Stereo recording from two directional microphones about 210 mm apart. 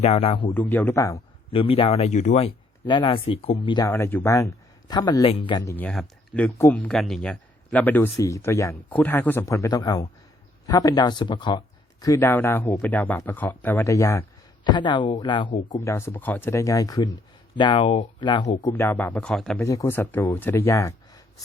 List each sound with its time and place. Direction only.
0.0 s speech: 30° left (ahead or behind)
0.5 s speech: 10° left (ahead or behind)
1.5 s speech: 25° left (ahead or behind)
2.8 s speech: 25° left (ahead or behind)
5.7 s speech: 5° left (ahead or behind); by 18.4 s 20° left (ahead or behind)
18.6 s speech: 10° left (ahead or behind)
19.5 s speech: 15° left (ahead or behind)